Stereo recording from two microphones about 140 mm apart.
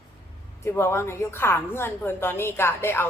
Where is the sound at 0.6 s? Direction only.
20° left (ahead or behind).